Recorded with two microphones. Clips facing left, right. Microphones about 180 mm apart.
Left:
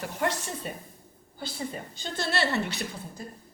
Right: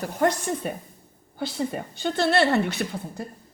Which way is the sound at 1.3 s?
65° right (ahead or behind).